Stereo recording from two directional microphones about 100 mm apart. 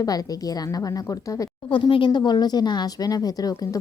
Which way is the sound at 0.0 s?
40° left (ahead or behind).